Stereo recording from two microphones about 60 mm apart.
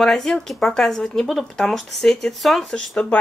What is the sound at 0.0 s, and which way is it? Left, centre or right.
Speech, centre.